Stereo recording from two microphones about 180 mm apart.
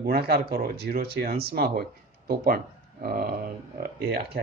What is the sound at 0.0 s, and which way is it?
Speech, 60° right (ahead or behind).